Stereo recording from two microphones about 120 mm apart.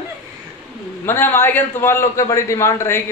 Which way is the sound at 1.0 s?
20° left (ahead or behind).